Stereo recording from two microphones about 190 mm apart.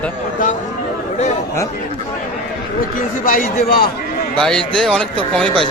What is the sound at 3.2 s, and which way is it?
Speech, 45° left (ahead or behind).